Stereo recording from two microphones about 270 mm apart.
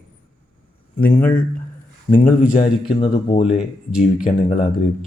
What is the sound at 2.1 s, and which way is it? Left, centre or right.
Speech, left.